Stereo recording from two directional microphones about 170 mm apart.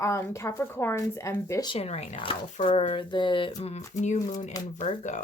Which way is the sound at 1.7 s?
40° left (ahead or behind).